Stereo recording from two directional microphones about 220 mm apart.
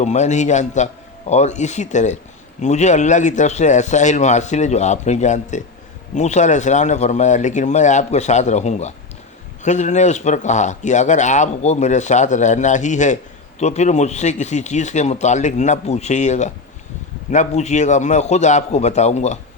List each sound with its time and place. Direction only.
0.0 s speech: 30° left (ahead or behind)